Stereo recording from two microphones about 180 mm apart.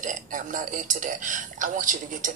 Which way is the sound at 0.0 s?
45° right (ahead or behind).